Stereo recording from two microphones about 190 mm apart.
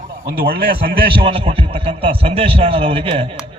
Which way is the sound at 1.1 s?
30° right (ahead or behind).